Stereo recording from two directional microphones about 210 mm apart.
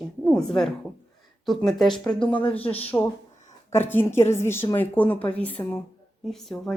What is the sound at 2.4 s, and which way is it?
Speech, 25° left (ahead or behind).